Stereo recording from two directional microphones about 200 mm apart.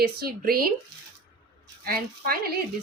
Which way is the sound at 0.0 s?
50° right (ahead or behind).